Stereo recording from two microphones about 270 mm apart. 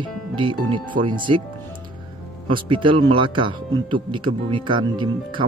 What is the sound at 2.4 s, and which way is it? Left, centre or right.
Speech, centre.